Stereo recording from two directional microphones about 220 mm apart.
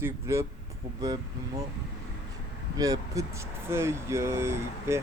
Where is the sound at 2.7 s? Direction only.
15° right (ahead or behind).